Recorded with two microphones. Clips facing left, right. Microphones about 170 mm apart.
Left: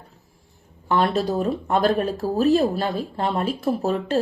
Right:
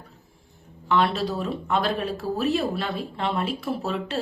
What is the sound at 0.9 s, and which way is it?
Speech, 45° left (ahead or behind).